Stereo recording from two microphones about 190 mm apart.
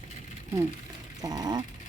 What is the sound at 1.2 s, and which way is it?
Speech, 20° right (ahead or behind).